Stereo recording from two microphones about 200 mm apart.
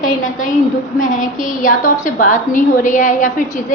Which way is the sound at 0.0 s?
40° left (ahead or behind).